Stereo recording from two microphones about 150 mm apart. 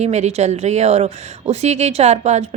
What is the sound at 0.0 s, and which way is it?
Speech, 45° right (ahead or behind).